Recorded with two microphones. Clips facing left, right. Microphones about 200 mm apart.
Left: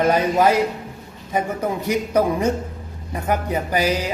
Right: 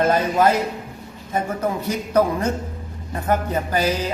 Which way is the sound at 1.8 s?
15° left (ahead or behind).